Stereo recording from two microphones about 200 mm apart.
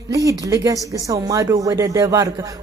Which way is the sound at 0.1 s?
15° right (ahead or behind).